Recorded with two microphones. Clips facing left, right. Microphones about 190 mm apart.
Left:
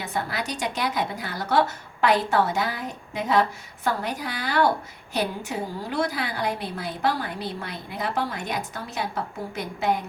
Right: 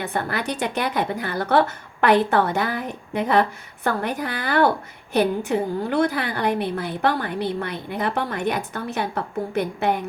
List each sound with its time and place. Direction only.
0.0 s a woman's voice: 60° right (ahead or behind)